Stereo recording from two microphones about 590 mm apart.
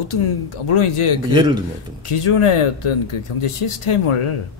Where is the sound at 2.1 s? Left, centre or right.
Left.